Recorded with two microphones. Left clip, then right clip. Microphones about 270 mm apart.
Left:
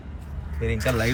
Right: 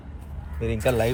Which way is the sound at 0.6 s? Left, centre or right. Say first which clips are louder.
Right 2 dB; centre.